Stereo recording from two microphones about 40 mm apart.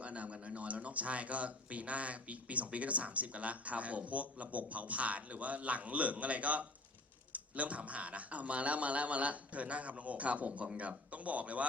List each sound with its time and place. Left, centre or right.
0.0 s a man's voice: right